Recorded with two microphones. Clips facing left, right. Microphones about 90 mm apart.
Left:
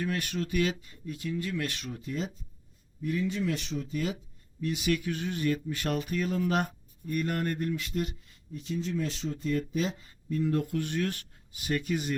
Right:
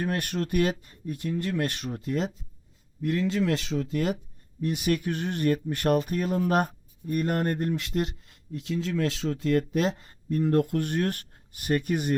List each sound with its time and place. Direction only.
0.0 s speech: 50° right (ahead or behind)
4.6 s speech: 45° right (ahead or behind)
7.9 s speech: 60° right (ahead or behind)